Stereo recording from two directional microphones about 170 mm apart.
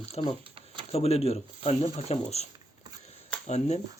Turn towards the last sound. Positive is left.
turn(degrees=40)  # may be behind; listen again after turning